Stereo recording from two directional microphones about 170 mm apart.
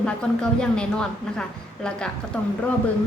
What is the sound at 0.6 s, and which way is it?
A woman's voice, 5° left (ahead or behind).